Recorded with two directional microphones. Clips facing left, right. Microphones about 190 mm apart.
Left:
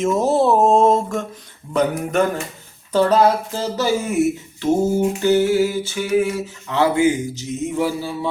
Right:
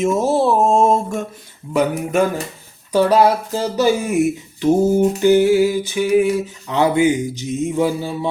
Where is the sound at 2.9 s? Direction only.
10° right (ahead or behind).